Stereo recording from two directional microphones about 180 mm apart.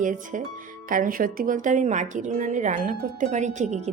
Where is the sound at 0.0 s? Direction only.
45° right (ahead or behind).